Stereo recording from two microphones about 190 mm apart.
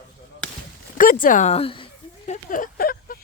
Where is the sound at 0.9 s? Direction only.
45° left (ahead or behind).